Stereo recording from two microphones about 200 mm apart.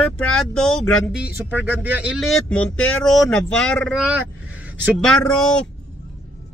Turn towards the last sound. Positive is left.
turn(degrees=5)  # may be behind; listen again after turning